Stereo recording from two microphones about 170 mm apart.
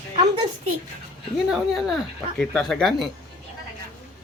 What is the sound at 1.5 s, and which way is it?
Speech, centre (ahead or behind).